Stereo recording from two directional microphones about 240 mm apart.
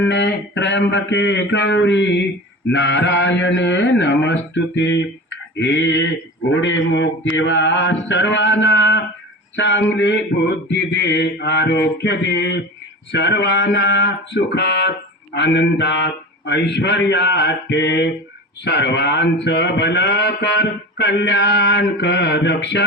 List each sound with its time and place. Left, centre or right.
0.0 s speech: left